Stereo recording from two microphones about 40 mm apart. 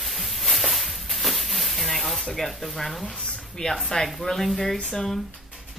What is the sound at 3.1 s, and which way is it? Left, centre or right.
A woman's voice, centre.